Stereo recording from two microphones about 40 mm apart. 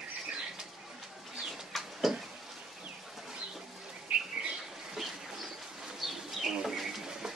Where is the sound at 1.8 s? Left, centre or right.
Centre.